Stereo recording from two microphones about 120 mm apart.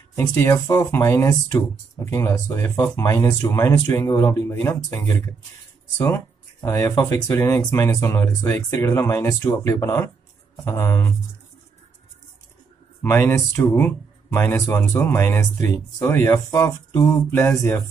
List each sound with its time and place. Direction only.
0.1 s speech: 25° left (ahead or behind)
13.0 s speech: 20° left (ahead or behind)